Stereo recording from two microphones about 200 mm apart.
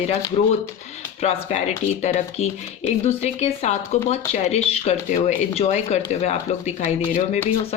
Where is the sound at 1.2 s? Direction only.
35° left (ahead or behind).